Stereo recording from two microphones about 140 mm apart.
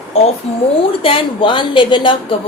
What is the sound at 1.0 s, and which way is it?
A woman's voice, 40° left (ahead or behind).